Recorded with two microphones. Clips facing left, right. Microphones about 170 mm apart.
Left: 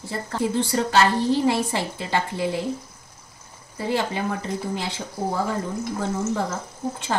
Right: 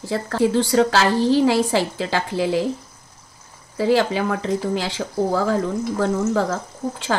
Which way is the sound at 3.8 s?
90° right.